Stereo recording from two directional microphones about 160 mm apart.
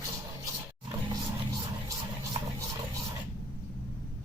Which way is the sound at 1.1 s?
25° right (ahead or behind).